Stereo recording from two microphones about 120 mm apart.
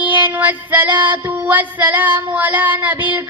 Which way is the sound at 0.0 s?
15° right (ahead or behind).